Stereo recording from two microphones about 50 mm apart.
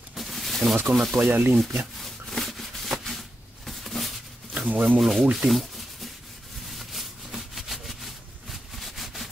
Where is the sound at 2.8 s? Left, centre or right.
Centre.